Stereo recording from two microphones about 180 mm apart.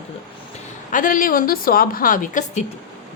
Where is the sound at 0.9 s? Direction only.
50° left (ahead or behind).